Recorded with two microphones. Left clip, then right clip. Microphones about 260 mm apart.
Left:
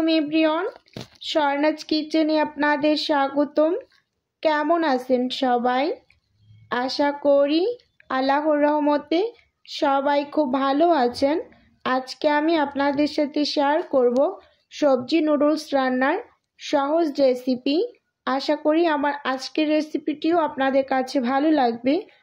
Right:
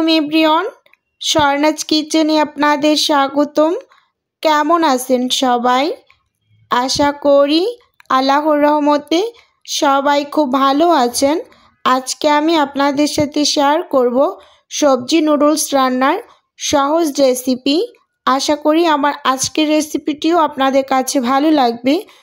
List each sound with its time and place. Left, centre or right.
0.0 s speech: right